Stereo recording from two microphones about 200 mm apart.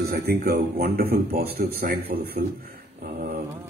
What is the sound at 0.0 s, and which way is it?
Speech, 45° right (ahead or behind).